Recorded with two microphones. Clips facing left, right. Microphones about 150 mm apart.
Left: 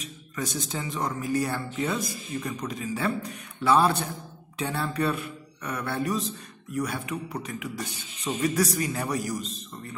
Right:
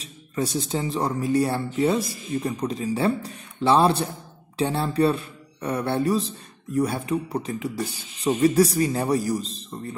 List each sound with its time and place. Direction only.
0.0 s speech: 30° right (ahead or behind)